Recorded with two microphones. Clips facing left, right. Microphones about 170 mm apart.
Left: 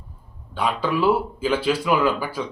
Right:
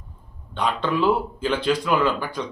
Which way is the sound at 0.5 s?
5° left (ahead or behind).